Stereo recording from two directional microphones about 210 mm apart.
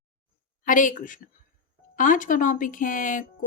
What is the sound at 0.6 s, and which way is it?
Speech, 40° left (ahead or behind).